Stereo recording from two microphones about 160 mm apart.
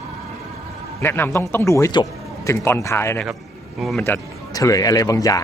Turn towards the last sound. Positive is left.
turn(degrees=20)  # may be behind; listen again after turning